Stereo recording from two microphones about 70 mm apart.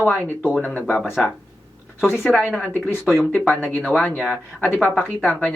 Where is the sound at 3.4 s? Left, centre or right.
Left.